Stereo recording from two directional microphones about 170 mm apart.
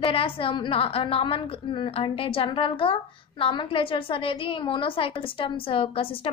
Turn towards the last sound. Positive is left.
turn(degrees=30)  # may be behind; listen again after turning